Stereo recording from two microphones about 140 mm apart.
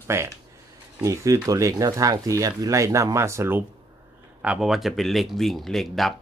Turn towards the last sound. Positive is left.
turn(degrees=0)  # may be behind; listen again after turning